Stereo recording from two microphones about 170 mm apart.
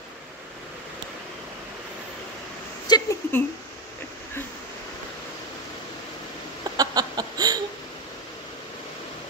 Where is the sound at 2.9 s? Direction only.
25° left (ahead or behind).